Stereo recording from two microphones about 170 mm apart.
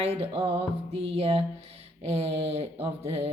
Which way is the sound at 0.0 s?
35° right (ahead or behind).